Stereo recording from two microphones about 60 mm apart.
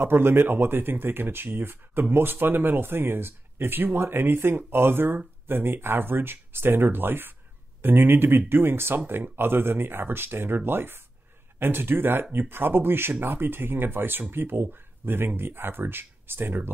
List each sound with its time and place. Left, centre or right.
0.0 s speech: right